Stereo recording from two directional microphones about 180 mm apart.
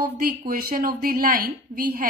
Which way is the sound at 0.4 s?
50° right (ahead or behind).